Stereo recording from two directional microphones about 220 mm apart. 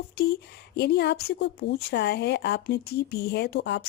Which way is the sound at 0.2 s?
45° left (ahead or behind).